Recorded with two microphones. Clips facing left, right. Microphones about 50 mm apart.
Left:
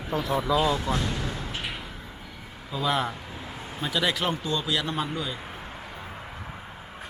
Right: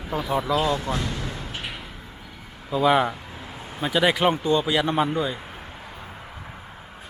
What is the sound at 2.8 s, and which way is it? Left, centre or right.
Speech, centre.